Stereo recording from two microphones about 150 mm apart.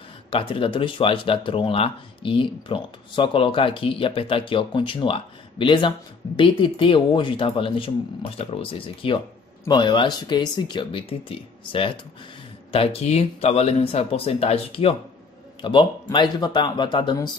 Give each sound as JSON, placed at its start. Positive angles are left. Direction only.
{"t": 0.3, "sound": "speech", "side_deg": 35}